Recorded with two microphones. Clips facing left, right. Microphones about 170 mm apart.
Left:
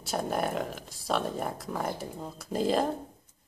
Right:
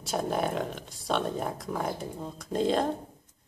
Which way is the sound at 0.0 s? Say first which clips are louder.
Right 1 dB; centre (ahead or behind).